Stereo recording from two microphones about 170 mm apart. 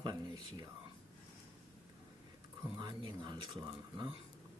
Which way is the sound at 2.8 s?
25° right (ahead or behind).